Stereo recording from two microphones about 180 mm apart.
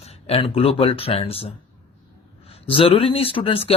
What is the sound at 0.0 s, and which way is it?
Speech, 35° left (ahead or behind).